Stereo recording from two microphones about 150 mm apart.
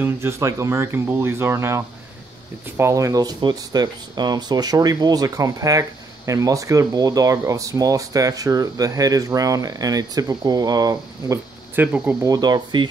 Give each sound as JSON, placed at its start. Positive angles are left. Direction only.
{"t": 0.0, "sound": "speech", "side_deg": -15}
{"t": 11.7, "sound": "speech", "side_deg": -10}
{"t": 12.2, "sound": "speech", "side_deg": -25}